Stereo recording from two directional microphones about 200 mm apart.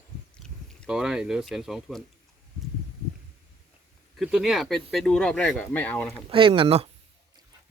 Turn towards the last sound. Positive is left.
turn(degrees=-30)  # may be behind; listen again after turning